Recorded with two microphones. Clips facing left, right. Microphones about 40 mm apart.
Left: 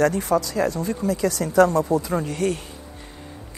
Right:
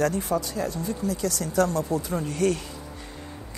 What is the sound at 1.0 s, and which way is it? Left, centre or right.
Speech, left.